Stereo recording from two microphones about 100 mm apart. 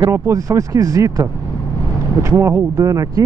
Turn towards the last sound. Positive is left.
turn(degrees=-35)  # may be behind; listen again after turning